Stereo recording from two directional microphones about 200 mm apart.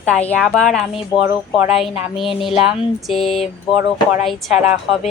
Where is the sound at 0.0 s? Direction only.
5° left (ahead or behind).